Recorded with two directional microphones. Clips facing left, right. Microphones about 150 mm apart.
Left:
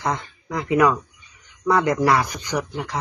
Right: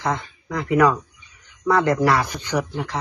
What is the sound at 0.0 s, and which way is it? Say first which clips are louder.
Speech: right 1 dB; 20° left (ahead or behind).